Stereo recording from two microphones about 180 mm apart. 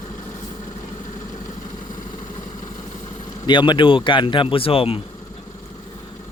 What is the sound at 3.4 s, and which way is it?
Speech, 25° left (ahead or behind).